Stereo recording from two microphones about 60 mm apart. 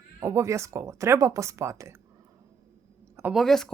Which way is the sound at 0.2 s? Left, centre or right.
Right.